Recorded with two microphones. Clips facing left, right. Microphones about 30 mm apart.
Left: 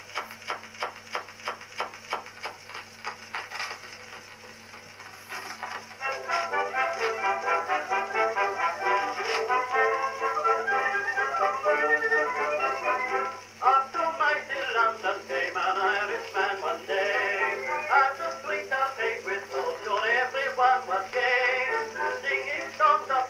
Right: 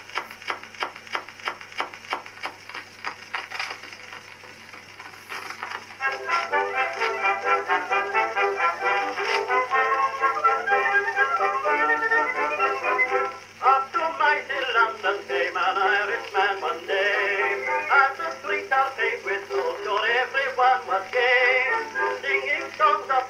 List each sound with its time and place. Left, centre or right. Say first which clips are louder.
0.1 s a sound: right 4 dB; right
5.3 s music: right 3 dB; right
18.5 s radio: right 6 dB; right